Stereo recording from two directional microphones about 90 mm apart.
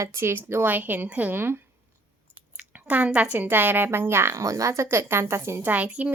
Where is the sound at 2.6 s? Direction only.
15° right (ahead or behind).